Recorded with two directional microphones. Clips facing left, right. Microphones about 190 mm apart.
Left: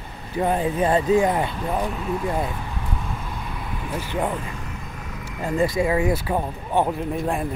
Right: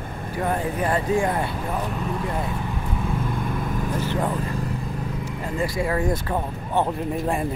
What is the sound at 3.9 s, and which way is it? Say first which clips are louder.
Speech: left 1 dB; 15° left (ahead or behind).